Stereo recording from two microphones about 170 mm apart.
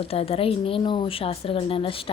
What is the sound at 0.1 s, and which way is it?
Speech, 35° left (ahead or behind).